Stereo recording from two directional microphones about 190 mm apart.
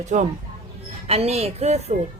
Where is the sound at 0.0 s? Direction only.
40° right (ahead or behind).